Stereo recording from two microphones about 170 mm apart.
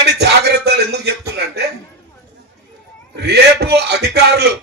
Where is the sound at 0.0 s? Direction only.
75° right (ahead or behind).